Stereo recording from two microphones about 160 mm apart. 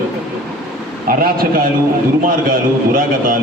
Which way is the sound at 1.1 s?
65° right (ahead or behind).